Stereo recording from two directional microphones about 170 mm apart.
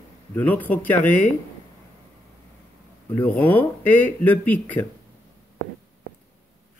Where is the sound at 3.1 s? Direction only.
10° left (ahead or behind).